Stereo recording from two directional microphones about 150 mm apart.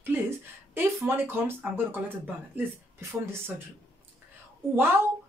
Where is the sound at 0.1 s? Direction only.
15° right (ahead or behind).